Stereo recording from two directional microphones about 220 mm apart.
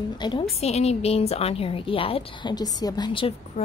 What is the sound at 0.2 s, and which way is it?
A woman's voice, 25° left (ahead or behind).